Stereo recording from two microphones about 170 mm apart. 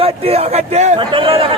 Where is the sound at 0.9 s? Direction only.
30° right (ahead or behind).